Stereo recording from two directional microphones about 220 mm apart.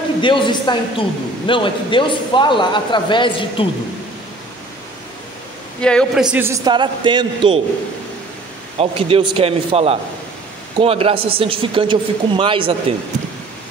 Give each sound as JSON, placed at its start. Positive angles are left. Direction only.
{"t": 0.2, "sound": "a man's voice", "side_deg": 20}
{"t": 5.8, "sound": "a man's voice", "side_deg": 5}
{"t": 6.3, "sound": "speech", "side_deg": -10}
{"t": 8.7, "sound": "speech", "side_deg": -25}